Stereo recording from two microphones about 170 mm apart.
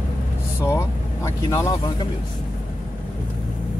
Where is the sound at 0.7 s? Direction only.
15° left (ahead or behind).